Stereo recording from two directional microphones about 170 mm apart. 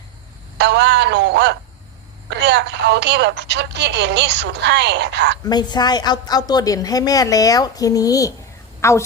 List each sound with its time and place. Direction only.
0.6 s a sound: 90° right
2.4 s speech: 90° right
5.5 s a woman's voice: 25° left (ahead or behind)